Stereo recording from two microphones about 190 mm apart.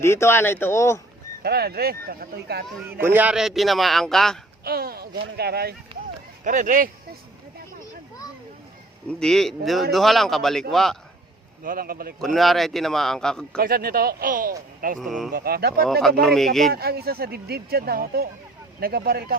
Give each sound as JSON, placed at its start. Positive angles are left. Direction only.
{"t": 0.0, "sound": "speech", "side_deg": 15}
{"t": 1.4, "sound": "speech", "side_deg": -55}
{"t": 3.0, "sound": "a man's voice", "side_deg": -10}
{"t": 4.6, "sound": "speech", "side_deg": -50}
{"t": 6.4, "sound": "speech", "side_deg": -40}
{"t": 9.0, "sound": "a man's voice", "side_deg": 5}
{"t": 11.6, "sound": "speech", "side_deg": -50}
{"t": 12.2, "sound": "a man's voice", "side_deg": 0}
{"t": 13.6, "sound": "speech", "side_deg": -50}
{"t": 14.9, "sound": "a man's voice", "side_deg": 0}
{"t": 15.3, "sound": "speech", "side_deg": -50}
{"t": 15.9, "sound": "a man's voice", "side_deg": 0}
{"t": 16.7, "sound": "speech", "side_deg": -55}